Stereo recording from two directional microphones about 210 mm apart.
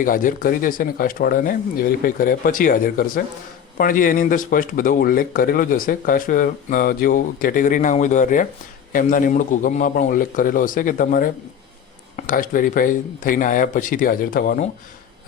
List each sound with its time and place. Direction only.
0.0 s speech: 40° left (ahead or behind)